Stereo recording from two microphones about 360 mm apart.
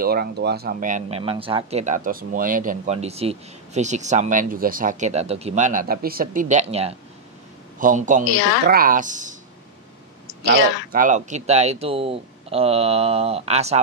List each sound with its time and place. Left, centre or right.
0.0 s speech: right
10.9 s speech: right